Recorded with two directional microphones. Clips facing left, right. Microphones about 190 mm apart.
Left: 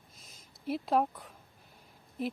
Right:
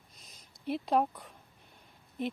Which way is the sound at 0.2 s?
Centre (ahead or behind).